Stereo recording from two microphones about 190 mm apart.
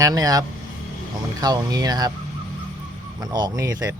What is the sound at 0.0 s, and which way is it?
Speech, 20° right (ahead or behind).